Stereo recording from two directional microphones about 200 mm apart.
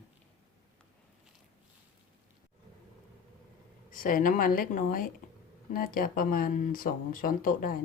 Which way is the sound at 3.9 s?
45° left (ahead or behind).